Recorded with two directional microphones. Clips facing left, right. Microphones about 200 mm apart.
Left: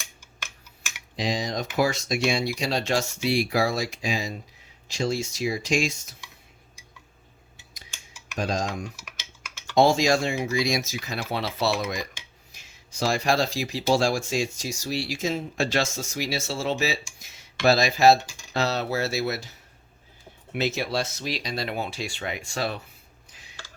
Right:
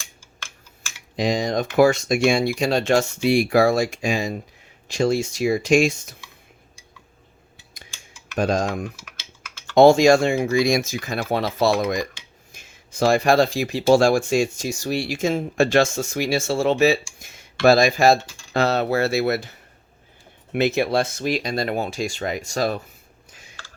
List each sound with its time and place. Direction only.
1.1 s speech: 50° right (ahead or behind)
8.4 s speech: 55° right (ahead or behind)
23.3 s a sound: 45° right (ahead or behind)